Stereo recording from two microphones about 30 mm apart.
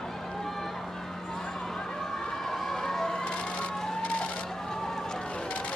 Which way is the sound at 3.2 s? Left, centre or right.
Left.